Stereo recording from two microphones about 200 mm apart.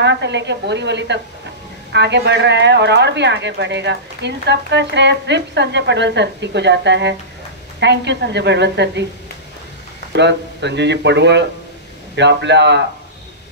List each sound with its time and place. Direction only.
0.0 s speech: 60° right (ahead or behind)
10.1 s speech: 60° right (ahead or behind)